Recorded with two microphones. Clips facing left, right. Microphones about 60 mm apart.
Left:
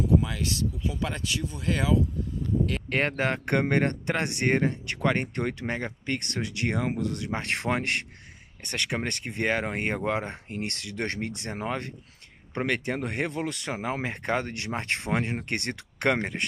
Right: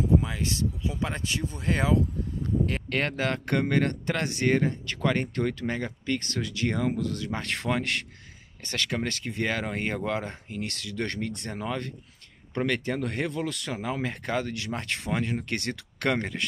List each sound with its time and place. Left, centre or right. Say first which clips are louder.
0.2 s speech: even; right
2.9 s speech: left 3 dB; left